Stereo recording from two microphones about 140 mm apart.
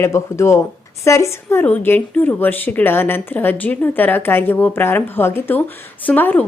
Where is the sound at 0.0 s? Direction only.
20° left (ahead or behind).